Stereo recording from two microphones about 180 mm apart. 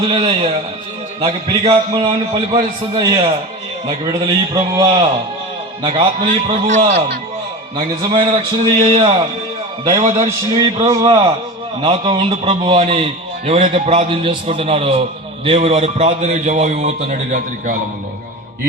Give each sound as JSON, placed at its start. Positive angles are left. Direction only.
{"t": 0.1, "sound": "a man's voice", "side_deg": -30}
{"t": 6.2, "sound": "a man's voice", "side_deg": -40}
{"t": 7.8, "sound": "a man's voice", "side_deg": -30}
{"t": 10.2, "sound": "a man's voice", "side_deg": -20}